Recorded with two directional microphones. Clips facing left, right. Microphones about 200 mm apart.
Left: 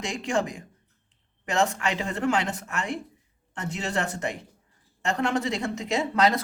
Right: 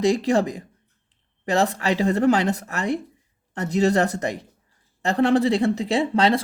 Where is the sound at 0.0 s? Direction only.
35° right (ahead or behind).